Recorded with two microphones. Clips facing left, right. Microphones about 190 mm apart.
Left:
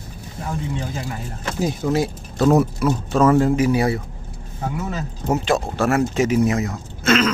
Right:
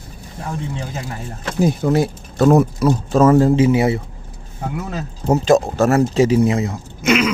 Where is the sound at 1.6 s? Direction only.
55° right (ahead or behind).